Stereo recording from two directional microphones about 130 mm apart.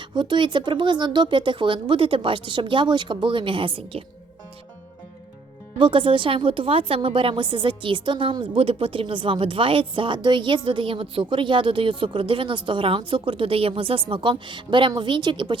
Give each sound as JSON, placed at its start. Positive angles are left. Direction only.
{"t": 0.0, "sound": "a woman's voice", "side_deg": -35}
{"t": 5.8, "sound": "a woman's voice", "side_deg": -40}